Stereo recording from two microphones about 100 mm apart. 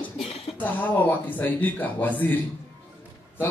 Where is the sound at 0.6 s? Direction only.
15° left (ahead or behind).